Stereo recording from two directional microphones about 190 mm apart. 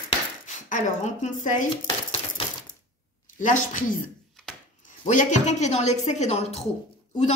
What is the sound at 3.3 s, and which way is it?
Speech, 40° left (ahead or behind).